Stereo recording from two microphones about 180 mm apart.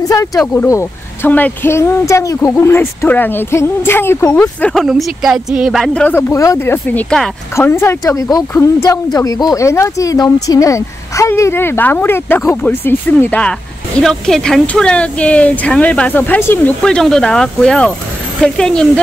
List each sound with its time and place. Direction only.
0.1 s a sound: 20° left (ahead or behind)
0.4 s speech: 10° left (ahead or behind)
6.0 s speech: 10° left (ahead or behind)